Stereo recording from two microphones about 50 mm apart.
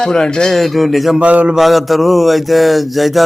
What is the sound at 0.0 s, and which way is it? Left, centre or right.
Speech, centre.